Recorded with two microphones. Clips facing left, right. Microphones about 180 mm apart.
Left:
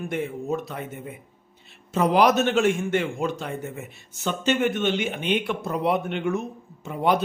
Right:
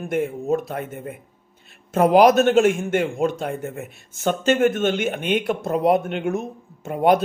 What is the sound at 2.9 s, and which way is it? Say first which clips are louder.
Speech: right 4 dB; 50° right (ahead or behind).